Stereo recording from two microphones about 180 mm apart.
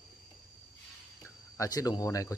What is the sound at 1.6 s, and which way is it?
Speech, 20° left (ahead or behind).